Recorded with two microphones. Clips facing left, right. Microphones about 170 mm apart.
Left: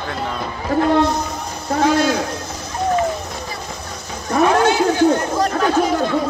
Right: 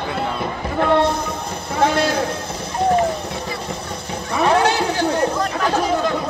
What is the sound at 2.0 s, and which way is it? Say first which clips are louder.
Speech: left 1 dB; 30° right (ahead or behind).